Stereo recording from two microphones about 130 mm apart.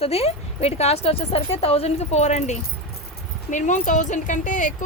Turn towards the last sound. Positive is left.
turn(degrees=80)